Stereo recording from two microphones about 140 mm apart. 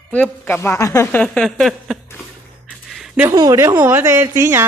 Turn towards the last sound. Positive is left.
turn(degrees=-15)  # may be behind; listen again after turning